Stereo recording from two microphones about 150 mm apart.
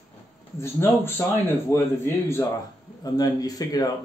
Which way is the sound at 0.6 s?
15° left (ahead or behind).